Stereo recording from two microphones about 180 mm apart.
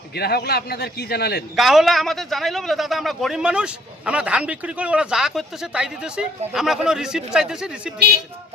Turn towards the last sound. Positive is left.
turn(degrees=-5)  # may be behind; listen again after turning